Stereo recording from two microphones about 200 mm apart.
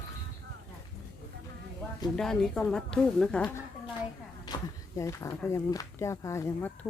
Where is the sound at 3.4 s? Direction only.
20° left (ahead or behind).